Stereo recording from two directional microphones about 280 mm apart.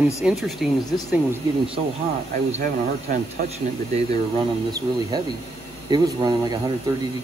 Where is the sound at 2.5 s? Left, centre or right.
Right.